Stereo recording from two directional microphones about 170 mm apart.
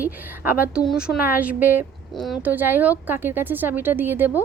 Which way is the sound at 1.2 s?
10° right (ahead or behind).